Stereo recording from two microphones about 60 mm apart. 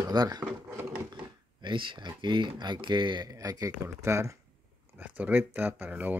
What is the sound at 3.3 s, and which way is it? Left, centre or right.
Speech, right.